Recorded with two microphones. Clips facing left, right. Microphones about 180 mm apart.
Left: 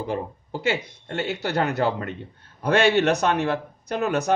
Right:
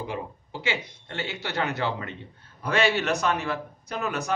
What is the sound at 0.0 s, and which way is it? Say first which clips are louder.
Speech: left 5 dB; 45° left (ahead or behind).